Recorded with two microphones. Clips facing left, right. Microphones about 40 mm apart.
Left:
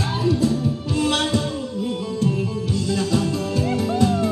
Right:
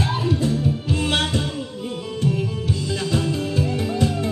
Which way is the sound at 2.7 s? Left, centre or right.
Right.